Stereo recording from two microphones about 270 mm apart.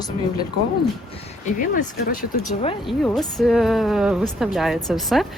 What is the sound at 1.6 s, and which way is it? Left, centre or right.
Speech, left.